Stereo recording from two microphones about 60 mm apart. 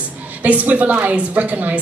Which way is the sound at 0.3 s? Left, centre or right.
Right.